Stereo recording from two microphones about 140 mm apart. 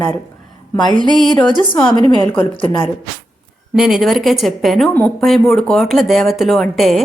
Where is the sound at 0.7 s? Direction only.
35° left (ahead or behind).